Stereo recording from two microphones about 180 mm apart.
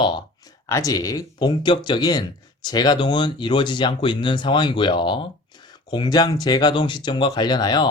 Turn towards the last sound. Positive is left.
turn(degrees=25)  # may be behind; listen again after turning